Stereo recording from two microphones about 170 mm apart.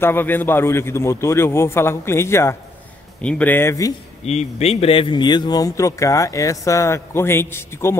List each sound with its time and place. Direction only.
0.0 s a man's voice: 10° left (ahead or behind)
4.3 s speech: 40° left (ahead or behind); by 8.0 s 15° left (ahead or behind)